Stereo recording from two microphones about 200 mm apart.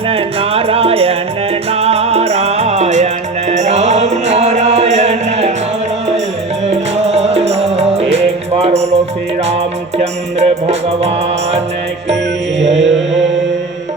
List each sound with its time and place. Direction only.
0.1 s music: 30° right (ahead or behind)
6.7 s music: 35° right (ahead or behind)
10.0 s music: 35° right (ahead or behind)